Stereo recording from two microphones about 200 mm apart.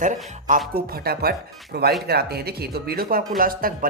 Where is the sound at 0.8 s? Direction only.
50° right (ahead or behind).